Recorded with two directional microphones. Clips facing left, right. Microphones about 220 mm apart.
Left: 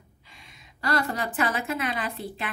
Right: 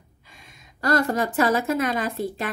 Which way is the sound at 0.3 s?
45° right (ahead or behind).